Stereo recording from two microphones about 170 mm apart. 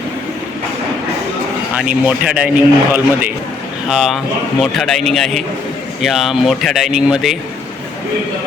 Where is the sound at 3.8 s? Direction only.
Centre (ahead or behind).